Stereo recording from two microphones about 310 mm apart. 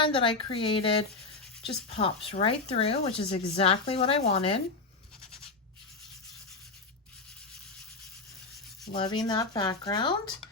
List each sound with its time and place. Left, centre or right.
0.0 s speech: centre
9.0 s speech: centre